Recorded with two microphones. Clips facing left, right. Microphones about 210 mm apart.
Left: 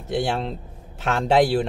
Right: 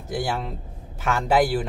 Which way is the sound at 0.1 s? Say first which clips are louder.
Left 3 dB; 25° left (ahead or behind).